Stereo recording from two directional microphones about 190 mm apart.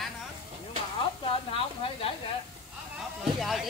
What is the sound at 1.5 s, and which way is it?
Speech, 30° left (ahead or behind).